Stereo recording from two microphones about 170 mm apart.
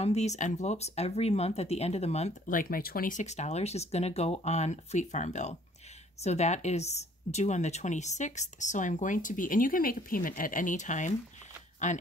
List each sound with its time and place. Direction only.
0.0 s a woman's voice: 40° left (ahead or behind)